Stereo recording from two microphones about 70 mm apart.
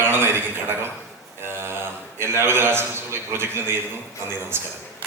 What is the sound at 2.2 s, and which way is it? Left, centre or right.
A man's voice, right.